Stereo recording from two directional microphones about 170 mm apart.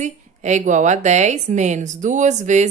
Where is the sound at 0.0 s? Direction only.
45° right (ahead or behind).